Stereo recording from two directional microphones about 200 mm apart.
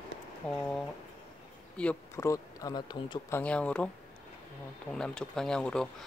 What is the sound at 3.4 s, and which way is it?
Speech, 5° left (ahead or behind).